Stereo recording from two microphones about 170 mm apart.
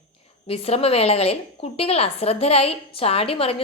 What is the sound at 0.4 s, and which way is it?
A woman's voice, 35° left (ahead or behind).